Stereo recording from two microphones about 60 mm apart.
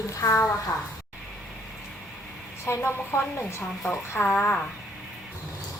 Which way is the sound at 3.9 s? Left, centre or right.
Left.